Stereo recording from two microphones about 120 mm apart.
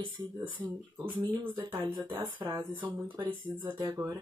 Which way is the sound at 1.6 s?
45° right (ahead or behind).